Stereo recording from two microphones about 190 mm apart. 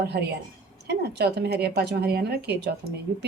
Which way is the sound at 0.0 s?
60° right (ahead or behind).